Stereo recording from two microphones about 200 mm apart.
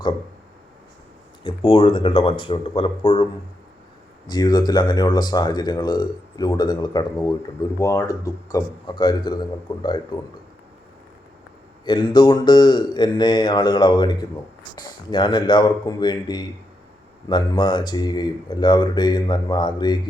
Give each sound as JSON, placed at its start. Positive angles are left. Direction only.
{"t": 1.5, "sound": "speech", "side_deg": 25}
{"t": 4.3, "sound": "speech", "side_deg": 20}
{"t": 11.9, "sound": "speech", "side_deg": 20}